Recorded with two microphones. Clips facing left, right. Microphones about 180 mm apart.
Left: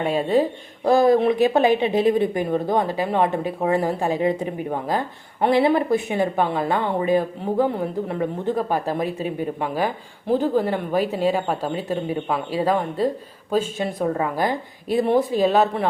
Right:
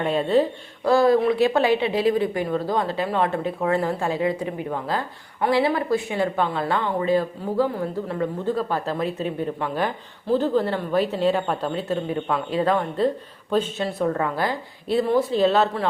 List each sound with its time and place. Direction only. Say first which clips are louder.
0.0 s speech: even; 10° left (ahead or behind)